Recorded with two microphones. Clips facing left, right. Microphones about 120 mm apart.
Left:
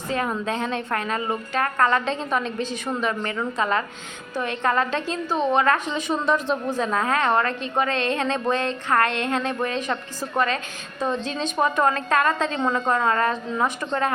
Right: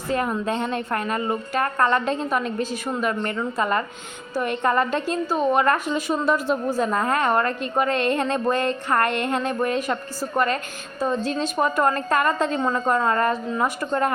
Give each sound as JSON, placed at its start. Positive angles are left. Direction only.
{"t": 0.1, "sound": "a woman's voice", "side_deg": -5}